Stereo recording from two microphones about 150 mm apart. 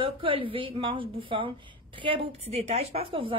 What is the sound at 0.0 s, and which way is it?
A woman's voice, 35° right (ahead or behind).